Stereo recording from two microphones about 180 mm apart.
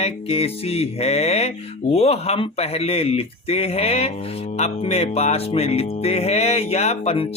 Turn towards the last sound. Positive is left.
turn(degrees=35)  # may be behind; listen again after turning